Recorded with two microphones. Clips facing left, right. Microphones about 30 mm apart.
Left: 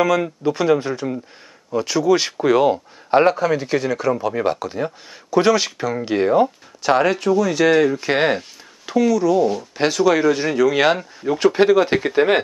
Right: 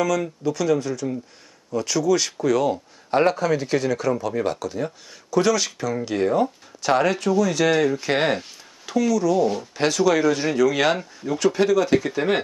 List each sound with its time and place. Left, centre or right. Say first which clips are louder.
0.0 s speech: left 5 dB; left
3.3 s speech: left 3 dB; centre
11.3 s speech: left 4 dB; left